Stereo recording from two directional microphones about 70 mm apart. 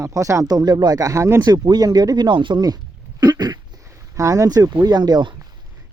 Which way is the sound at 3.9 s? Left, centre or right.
Right.